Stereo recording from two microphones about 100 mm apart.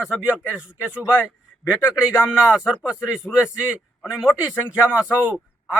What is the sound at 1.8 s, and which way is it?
Speech, 25° left (ahead or behind).